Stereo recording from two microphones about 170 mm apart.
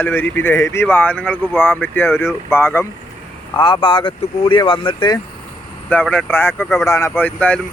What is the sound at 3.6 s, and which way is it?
Speech, 30° left (ahead or behind).